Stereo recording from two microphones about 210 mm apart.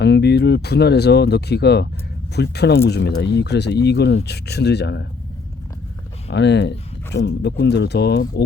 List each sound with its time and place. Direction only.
0.0 s speech: 55° left (ahead or behind)
6.2 s speech: 55° left (ahead or behind)